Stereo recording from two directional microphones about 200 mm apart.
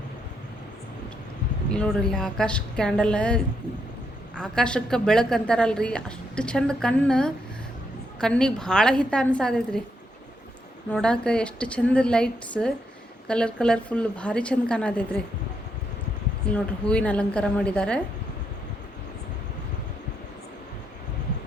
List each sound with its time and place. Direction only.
1.7 s speech: 5° left (ahead or behind)
10.9 s speech: 5° left (ahead or behind)
16.5 s speech: 5° left (ahead or behind)